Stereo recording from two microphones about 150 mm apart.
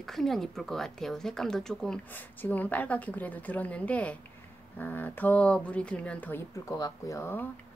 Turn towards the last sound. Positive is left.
turn(degrees=15)  # may be behind; listen again after turning